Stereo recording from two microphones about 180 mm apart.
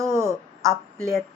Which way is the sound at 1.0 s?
20° left (ahead or behind).